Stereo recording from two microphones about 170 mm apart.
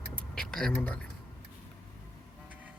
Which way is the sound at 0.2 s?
5° left (ahead or behind).